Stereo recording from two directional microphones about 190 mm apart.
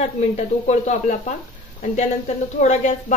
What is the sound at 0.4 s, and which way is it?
Speech, 40° left (ahead or behind).